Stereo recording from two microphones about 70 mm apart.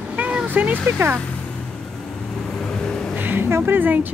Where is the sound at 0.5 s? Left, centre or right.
Right.